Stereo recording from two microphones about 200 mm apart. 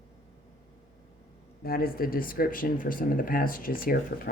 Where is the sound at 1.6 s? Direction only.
50° left (ahead or behind).